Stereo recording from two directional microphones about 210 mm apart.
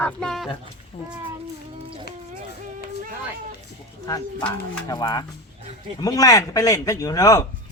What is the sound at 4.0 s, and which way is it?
Speech, 10° left (ahead or behind).